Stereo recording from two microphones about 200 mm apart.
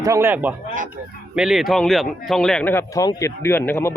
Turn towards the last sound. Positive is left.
turn(degrees=10)  # may be behind; listen again after turning